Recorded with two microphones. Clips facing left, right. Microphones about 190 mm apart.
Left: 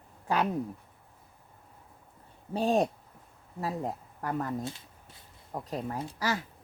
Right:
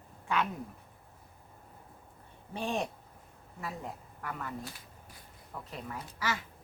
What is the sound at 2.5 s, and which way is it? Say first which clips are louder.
Speech: left 8 dB; 35° left (ahead or behind).